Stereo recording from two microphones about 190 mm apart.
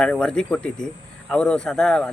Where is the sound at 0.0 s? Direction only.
5° left (ahead or behind).